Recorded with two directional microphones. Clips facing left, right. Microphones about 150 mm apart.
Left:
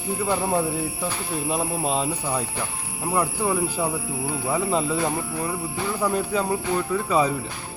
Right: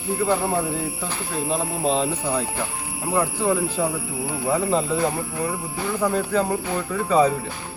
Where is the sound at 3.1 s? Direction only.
10° left (ahead or behind).